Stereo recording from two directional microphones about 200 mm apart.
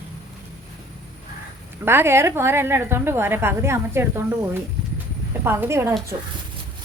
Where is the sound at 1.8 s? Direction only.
10° right (ahead or behind).